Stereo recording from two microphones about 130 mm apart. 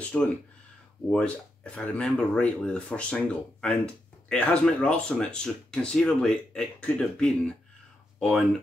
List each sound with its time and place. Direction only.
0.1 s speech: 15° left (ahead or behind)